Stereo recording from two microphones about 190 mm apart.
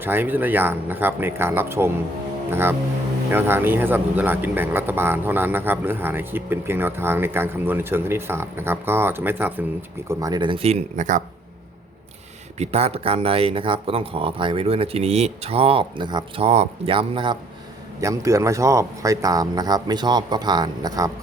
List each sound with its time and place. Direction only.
0.0 s speech: 10° right (ahead or behind); by 11.2 s 40° right (ahead or behind)
12.5 s speech: 30° right (ahead or behind)
18.0 s speech: 15° right (ahead or behind)